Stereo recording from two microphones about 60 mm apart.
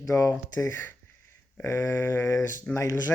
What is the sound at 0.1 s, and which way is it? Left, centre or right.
Speech, left.